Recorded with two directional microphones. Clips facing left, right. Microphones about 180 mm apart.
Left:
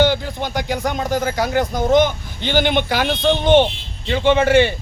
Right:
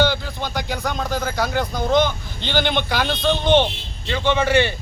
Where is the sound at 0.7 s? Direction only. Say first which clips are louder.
Left 5 dB; 15° left (ahead or behind).